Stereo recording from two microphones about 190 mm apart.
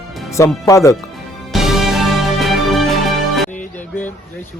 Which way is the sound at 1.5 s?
Centre (ahead or behind).